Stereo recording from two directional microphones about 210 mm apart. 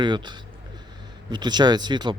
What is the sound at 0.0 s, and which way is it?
Speech, 20° right (ahead or behind).